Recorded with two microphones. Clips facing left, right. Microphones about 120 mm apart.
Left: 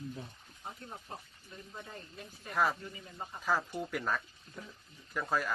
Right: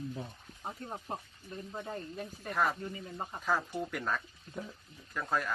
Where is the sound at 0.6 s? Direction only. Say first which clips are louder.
Right 5 dB; 35° right (ahead or behind).